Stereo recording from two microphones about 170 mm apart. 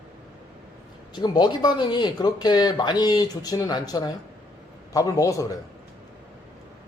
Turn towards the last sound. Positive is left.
turn(degrees=20)  # may be behind; listen again after turning